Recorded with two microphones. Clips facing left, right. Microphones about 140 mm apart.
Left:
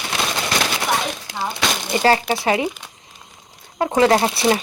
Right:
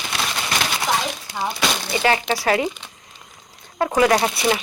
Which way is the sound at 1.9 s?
40° left (ahead or behind).